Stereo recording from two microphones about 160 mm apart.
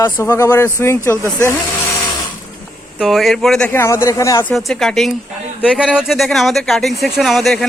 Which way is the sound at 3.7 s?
15° left (ahead or behind).